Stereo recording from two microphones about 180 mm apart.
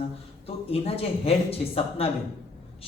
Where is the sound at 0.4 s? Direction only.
35° left (ahead or behind).